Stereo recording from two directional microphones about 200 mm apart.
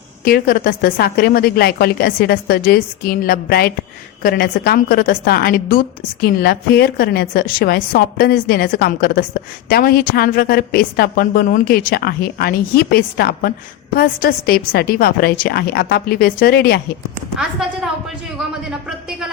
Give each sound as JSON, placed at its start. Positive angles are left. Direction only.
{"t": 0.3, "sound": "a woman's voice", "side_deg": 50}